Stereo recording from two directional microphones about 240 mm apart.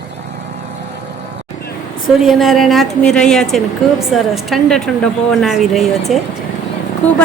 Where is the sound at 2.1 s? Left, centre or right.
Centre.